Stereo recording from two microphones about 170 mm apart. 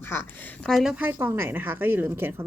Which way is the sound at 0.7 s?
Centre (ahead or behind).